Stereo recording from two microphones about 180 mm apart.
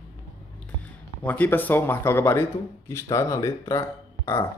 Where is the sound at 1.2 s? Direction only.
10° left (ahead or behind).